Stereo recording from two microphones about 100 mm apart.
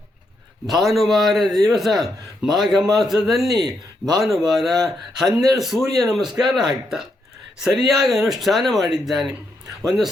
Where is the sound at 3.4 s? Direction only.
40° right (ahead or behind).